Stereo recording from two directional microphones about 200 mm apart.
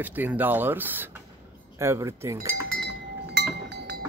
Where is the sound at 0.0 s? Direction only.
10° right (ahead or behind).